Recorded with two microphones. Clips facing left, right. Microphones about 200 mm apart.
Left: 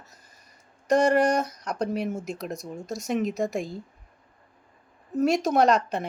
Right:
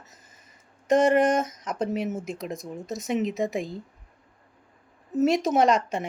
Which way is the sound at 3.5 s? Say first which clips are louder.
Even; 20° right (ahead or behind).